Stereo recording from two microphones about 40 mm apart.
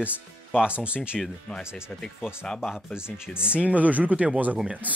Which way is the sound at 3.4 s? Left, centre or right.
Right.